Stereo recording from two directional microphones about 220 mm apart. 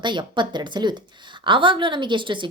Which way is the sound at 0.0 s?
20° right (ahead or behind).